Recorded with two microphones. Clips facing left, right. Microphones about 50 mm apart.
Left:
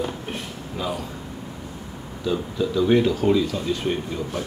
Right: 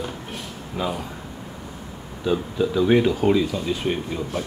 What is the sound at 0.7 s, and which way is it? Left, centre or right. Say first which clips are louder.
Speech: right 2 dB; centre.